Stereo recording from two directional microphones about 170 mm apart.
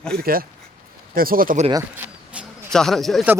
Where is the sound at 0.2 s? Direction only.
60° right (ahead or behind).